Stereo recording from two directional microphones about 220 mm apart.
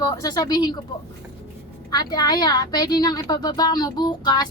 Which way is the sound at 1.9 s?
20° left (ahead or behind).